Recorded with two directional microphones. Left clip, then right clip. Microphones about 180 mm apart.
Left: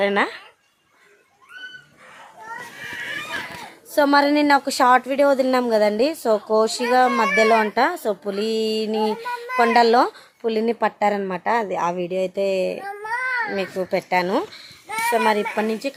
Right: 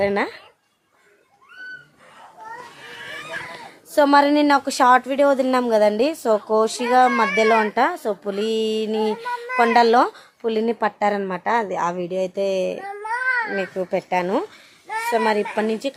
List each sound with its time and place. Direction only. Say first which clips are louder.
0.0 s speech: left 1 dB; 10° right (ahead or behind)
3.9 s speech: right 2 dB; 5° right (ahead or behind)
9.2 s a sound: right 1 dB; 65° left (ahead or behind)
9.6 s speech: even; centre (ahead or behind)
12.8 s baby cry: right 1 dB; 60° left (ahead or behind)
13.6 s speech: even; centre (ahead or behind)